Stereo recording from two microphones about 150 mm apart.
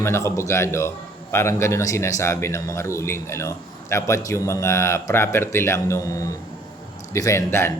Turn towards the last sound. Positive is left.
turn(degrees=15)  # may be behind; listen again after turning